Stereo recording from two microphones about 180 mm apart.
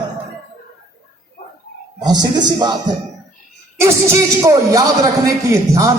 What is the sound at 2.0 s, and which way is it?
A man's voice, 25° right (ahead or behind).